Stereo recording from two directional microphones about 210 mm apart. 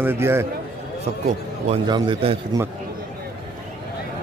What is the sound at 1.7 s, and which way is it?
Speech, 25° right (ahead or behind).